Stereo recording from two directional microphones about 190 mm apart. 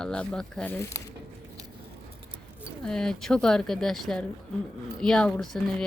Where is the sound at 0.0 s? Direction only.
5° left (ahead or behind).